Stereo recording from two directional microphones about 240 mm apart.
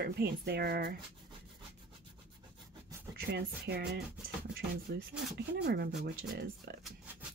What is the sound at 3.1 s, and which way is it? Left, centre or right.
A woman's voice, right.